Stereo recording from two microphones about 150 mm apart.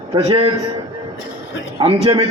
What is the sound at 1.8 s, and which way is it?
Speech, 35° right (ahead or behind).